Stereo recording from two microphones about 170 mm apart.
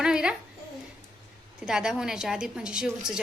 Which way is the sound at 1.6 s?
5° right (ahead or behind).